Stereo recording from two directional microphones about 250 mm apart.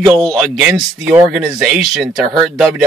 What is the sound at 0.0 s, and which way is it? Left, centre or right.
Speech, centre.